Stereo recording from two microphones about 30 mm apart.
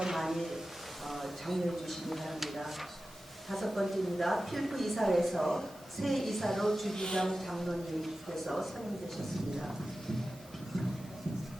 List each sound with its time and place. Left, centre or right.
0.1 s a sound: centre
1.0 s a woman's voice: centre
6.9 s speech: centre
7.3 s a woman's voice: centre